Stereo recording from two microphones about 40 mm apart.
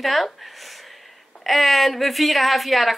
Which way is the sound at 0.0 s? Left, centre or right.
Centre.